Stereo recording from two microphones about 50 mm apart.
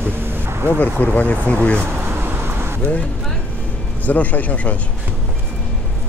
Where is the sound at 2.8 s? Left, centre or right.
Left.